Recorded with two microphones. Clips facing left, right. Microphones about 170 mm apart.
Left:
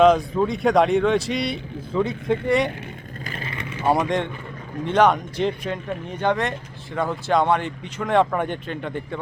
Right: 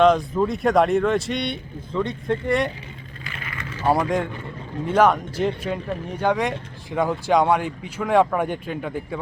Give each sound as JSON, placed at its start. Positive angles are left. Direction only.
{"t": 0.0, "sound": "speech", "side_deg": 0}
{"t": 3.2, "sound": "vehicle", "side_deg": 40}
{"t": 4.0, "sound": "speech", "side_deg": -5}